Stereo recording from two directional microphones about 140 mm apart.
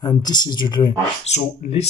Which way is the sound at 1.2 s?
50° left (ahead or behind).